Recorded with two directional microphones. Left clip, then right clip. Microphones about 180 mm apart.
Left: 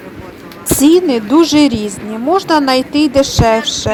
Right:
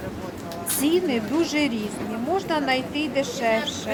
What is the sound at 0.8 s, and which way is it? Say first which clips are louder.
A woman's voice: left 12 dB; 30° left (ahead or behind).